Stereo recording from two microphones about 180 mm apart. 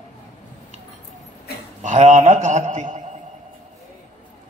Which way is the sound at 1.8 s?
45° right (ahead or behind).